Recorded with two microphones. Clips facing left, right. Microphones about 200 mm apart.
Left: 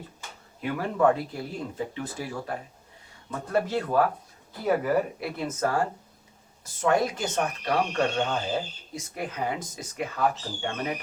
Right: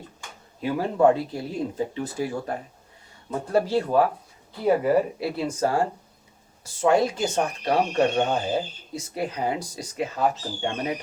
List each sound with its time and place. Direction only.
0.6 s speech: 30° right (ahead or behind)
9.1 s speech: 35° right (ahead or behind)
10.1 s speech: 20° right (ahead or behind)